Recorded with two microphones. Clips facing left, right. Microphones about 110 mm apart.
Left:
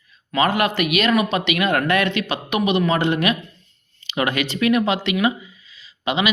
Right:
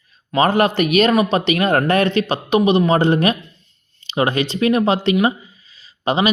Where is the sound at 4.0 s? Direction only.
30° right (ahead or behind).